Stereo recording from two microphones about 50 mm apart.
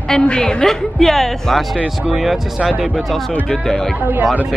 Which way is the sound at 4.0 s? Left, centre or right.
Right.